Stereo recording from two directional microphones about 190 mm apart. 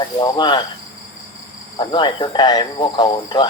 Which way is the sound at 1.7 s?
25° left (ahead or behind).